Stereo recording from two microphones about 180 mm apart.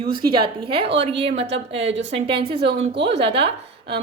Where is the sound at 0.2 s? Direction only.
30° right (ahead or behind).